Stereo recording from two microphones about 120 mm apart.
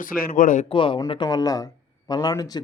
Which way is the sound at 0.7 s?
45° left (ahead or behind).